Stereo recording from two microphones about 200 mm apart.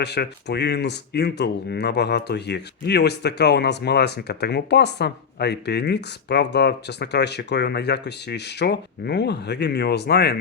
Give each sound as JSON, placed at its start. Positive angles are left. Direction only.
{"t": 0.0, "sound": "speech", "side_deg": 55}